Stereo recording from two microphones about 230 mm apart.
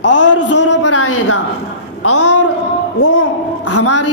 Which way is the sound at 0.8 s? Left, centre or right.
Left.